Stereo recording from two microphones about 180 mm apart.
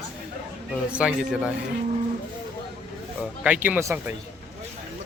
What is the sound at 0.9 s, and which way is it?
Speech, 5° right (ahead or behind).